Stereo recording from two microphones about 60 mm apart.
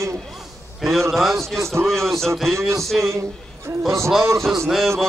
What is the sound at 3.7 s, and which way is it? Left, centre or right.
Speech, right.